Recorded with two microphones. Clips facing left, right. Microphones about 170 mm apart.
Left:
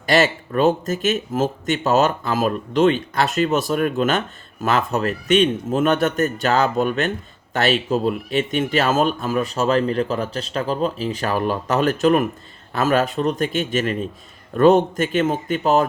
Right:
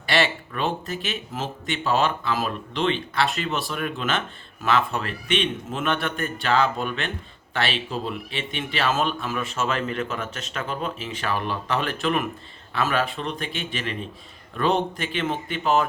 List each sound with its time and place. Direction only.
0.0 s a man's voice: 40° left (ahead or behind)